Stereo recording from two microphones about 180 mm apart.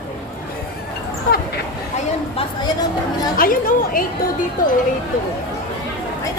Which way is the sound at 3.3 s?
50° left (ahead or behind).